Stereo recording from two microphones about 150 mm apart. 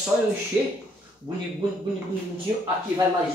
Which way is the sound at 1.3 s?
15° right (ahead or behind).